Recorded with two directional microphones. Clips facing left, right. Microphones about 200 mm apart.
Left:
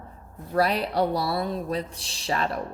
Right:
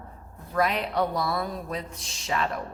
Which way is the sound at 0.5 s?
35° left (ahead or behind).